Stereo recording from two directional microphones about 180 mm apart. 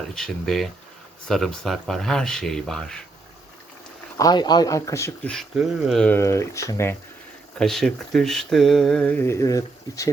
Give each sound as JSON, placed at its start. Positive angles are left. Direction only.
{"t": 0.1, "sound": "speech", "side_deg": 0}
{"t": 4.2, "sound": "speech", "side_deg": 20}
{"t": 5.3, "sound": "speech", "side_deg": 0}
{"t": 7.6, "sound": "speech", "side_deg": 0}